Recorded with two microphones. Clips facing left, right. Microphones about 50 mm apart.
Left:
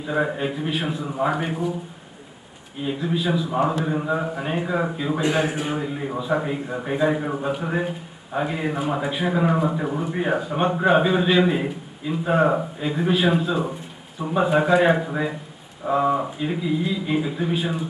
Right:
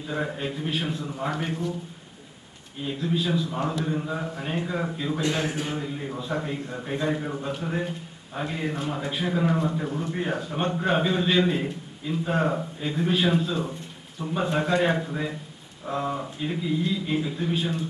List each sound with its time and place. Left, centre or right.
0.1 s a man's voice: centre
2.8 s a man's voice: centre